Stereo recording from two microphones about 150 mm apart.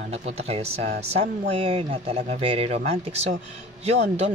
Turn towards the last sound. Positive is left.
turn(degrees=-45)  # may be behind; listen again after turning